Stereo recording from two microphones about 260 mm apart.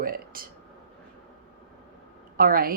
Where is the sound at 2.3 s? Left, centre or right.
Right.